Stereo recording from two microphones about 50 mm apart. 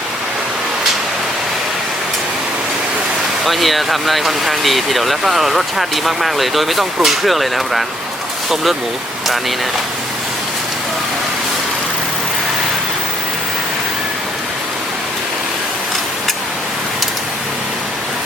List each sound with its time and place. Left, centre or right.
3.4 s speech: centre